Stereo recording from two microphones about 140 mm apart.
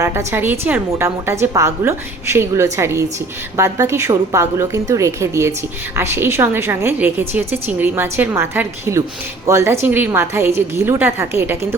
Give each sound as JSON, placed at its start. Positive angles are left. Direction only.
{"t": 0.0, "sound": "a woman's voice", "side_deg": -20}